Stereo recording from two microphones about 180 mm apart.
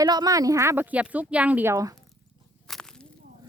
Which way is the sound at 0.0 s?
20° right (ahead or behind).